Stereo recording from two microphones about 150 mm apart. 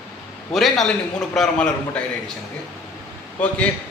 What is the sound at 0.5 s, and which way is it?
A man's voice, centre (ahead or behind).